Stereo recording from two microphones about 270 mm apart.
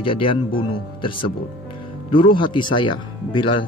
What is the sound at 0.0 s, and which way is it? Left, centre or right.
Speech, centre.